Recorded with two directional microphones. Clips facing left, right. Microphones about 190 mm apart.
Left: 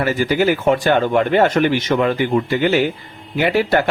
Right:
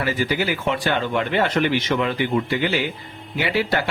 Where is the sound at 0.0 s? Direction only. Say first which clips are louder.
Left 6 dB; 45° left (ahead or behind).